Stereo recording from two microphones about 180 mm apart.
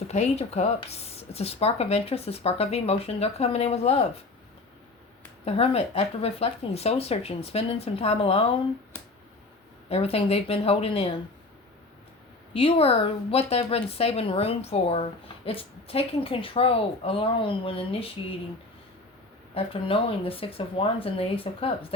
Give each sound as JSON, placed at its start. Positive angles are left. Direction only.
{"t": 0.1, "sound": "speech", "side_deg": 35}
{"t": 5.5, "sound": "speech", "side_deg": 35}
{"t": 9.9, "sound": "speech", "side_deg": 35}
{"t": 12.5, "sound": "speech", "side_deg": 30}
{"t": 19.5, "sound": "speech", "side_deg": 30}